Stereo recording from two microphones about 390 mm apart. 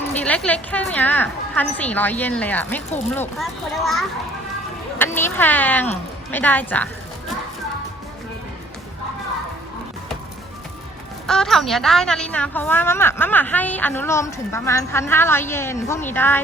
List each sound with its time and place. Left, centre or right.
0.2 s a woman's voice: centre
11.3 s a woman's voice: centre